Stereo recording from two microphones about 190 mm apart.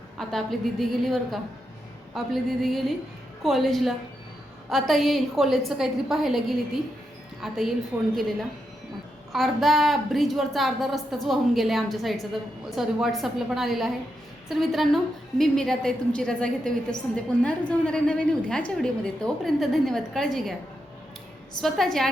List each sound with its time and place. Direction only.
0.2 s a woman's voice: centre (ahead or behind)
9.3 s a woman's voice: centre (ahead or behind)